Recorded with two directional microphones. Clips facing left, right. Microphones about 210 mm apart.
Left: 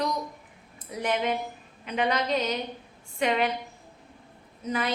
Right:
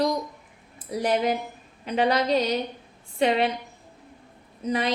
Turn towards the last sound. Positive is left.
turn(degrees=-30)  # may be behind; listen again after turning